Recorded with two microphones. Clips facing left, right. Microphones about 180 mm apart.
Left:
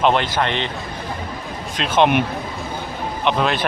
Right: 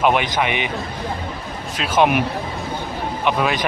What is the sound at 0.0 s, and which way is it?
Speech, 10° right (ahead or behind).